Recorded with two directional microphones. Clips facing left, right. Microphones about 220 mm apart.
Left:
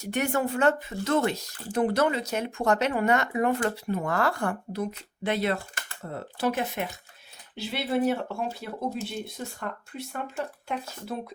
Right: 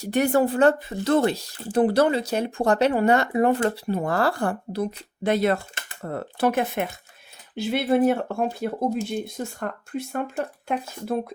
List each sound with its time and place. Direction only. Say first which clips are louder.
0.0 s speech: right 7 dB; 35° right (ahead or behind)
6.1 s speech: right 5 dB; 60° right (ahead or behind)